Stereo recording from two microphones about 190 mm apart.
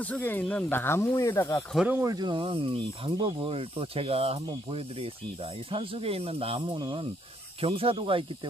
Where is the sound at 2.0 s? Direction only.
20° right (ahead or behind).